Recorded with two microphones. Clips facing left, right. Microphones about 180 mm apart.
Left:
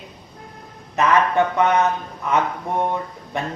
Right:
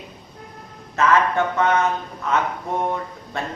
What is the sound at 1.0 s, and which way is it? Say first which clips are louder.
Speech: left 1 dB; 15° left (ahead or behind).